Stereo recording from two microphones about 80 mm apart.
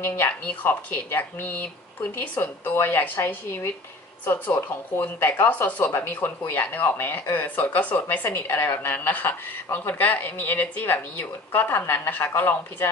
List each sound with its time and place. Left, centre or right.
0.0 s speech: left
4.5 s speech: left
5.0 s speech: left